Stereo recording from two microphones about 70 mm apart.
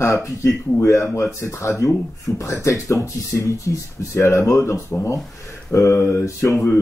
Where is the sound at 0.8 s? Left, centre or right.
Left.